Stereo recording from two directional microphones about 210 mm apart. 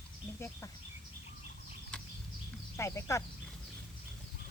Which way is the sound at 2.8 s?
15° left (ahead or behind).